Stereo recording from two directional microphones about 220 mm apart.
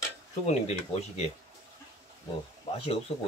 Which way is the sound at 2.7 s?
25° left (ahead or behind).